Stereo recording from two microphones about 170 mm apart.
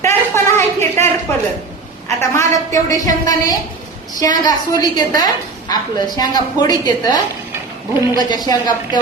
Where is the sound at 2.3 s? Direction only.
15° left (ahead or behind).